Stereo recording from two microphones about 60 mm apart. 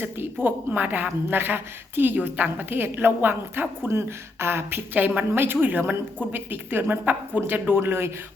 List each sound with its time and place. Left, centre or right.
0.4 s a woman's voice: right
4.9 s a woman's voice: right